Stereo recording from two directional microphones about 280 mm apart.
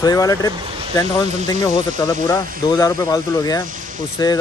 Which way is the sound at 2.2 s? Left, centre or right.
Centre.